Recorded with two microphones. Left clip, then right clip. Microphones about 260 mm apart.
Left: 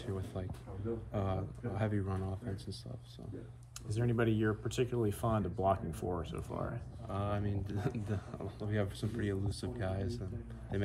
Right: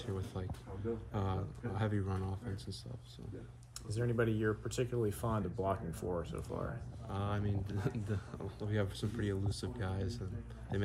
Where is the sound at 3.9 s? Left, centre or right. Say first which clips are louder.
Left 1 dB; left.